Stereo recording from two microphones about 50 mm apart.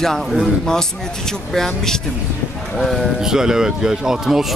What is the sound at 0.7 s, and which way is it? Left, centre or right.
Speech, centre.